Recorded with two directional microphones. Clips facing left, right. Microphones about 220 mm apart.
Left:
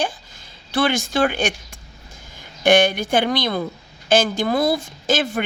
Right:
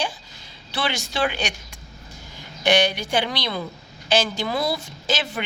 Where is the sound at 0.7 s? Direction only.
50° left (ahead or behind).